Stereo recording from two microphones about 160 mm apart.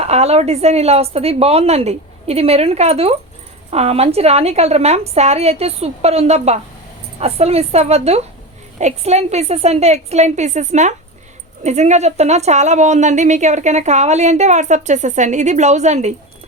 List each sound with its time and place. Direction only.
0.0 s a woman's voice: 40° right (ahead or behind)